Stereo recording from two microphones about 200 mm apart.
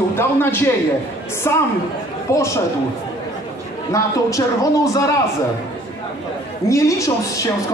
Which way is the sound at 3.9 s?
15° left (ahead or behind).